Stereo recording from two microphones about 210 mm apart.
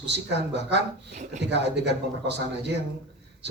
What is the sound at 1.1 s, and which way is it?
Speech, 35° right (ahead or behind).